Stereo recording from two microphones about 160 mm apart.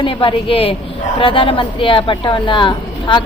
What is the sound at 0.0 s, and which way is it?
A woman's voice, 30° left (ahead or behind).